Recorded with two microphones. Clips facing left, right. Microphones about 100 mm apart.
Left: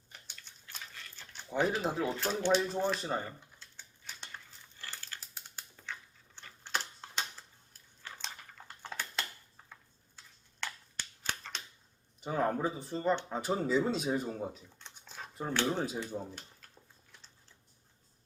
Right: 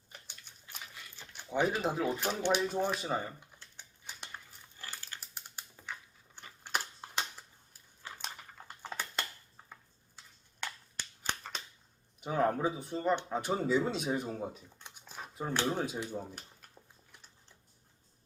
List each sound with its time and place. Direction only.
0.1 s dog: 15° right (ahead or behind)
1.5 s speech: 5° right (ahead or behind)
2.1 s speech: 15° right (ahead or behind)
3.6 s a sound: 15° right (ahead or behind)
12.2 s speech: centre (ahead or behind)
14.8 s a sound: 15° right (ahead or behind)
15.4 s speech: 10° right (ahead or behind)
15.6 s speech: centre (ahead or behind)
17.1 s a sound: 15° right (ahead or behind)